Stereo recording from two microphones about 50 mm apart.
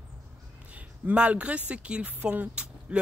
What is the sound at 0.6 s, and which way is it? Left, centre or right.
Speech, right.